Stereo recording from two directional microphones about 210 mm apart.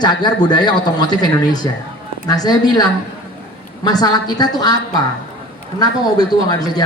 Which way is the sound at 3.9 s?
20° left (ahead or behind).